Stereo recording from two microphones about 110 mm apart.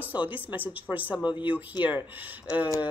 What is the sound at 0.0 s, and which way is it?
A woman's voice, 15° right (ahead or behind).